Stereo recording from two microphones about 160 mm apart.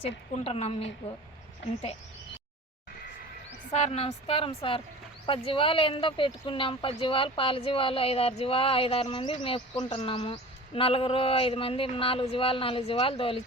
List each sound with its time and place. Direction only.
0.0 s speech: 40° left (ahead or behind)
3.7 s speech: 40° left (ahead or behind)